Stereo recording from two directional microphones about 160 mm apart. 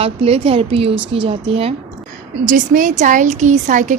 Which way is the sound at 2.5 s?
55° right (ahead or behind).